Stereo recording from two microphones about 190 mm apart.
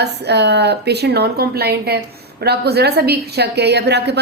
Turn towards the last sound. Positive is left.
turn(degrees=-60)  # may be behind; listen again after turning